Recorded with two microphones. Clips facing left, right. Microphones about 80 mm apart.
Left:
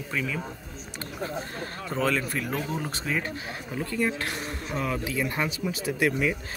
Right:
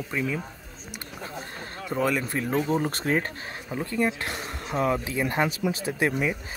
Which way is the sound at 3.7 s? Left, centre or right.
Right.